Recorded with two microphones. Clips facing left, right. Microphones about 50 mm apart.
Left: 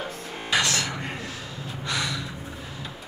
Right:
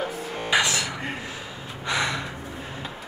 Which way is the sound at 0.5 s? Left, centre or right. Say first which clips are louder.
Right 1 dB; centre.